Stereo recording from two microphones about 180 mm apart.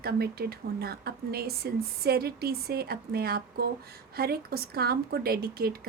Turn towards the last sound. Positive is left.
turn(degrees=-55)  # may be behind; listen again after turning